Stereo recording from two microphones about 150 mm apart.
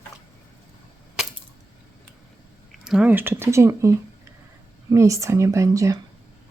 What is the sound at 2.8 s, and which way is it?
Speech, 5° right (ahead or behind).